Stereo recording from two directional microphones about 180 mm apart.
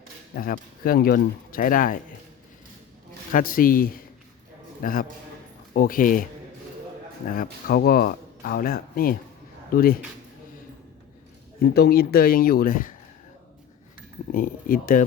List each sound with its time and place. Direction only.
0.3 s speech: 50° left (ahead or behind)
3.3 s speech: 50° left (ahead or behind)
7.3 s speech: 55° left (ahead or behind)
11.6 s speech: 60° left (ahead or behind)
14.3 s speech: 50° left (ahead or behind)